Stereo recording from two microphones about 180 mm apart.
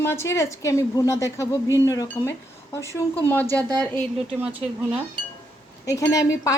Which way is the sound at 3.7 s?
20° right (ahead or behind).